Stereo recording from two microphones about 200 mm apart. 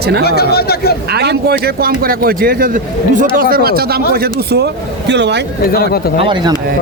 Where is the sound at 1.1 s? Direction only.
55° right (ahead or behind).